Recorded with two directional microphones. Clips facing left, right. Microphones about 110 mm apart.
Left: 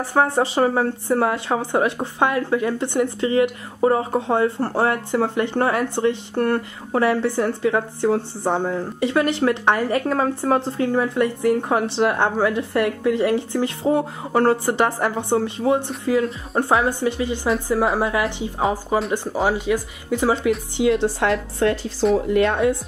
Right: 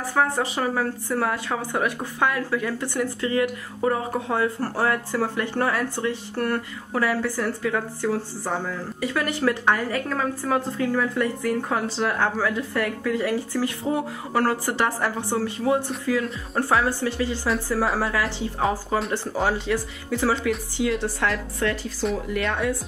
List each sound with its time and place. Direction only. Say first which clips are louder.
0.0 s a woman's voice: left 4 dB; 25° left (ahead or behind)